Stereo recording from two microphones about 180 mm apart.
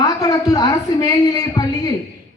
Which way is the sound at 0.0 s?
20° left (ahead or behind).